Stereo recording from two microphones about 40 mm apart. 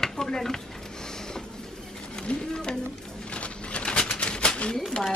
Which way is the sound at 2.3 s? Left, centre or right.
Left.